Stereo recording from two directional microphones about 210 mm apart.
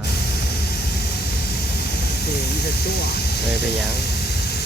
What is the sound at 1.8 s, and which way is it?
Speech, 50° left (ahead or behind).